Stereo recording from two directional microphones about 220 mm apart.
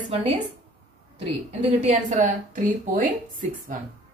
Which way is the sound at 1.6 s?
30° right (ahead or behind).